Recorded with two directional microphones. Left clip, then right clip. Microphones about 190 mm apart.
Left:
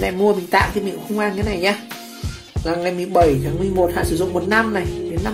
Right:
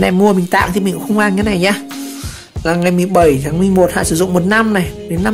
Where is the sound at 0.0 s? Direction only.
40° right (ahead or behind).